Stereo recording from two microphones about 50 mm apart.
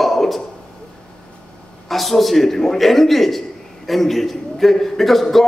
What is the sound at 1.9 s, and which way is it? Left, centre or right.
A man's voice, centre.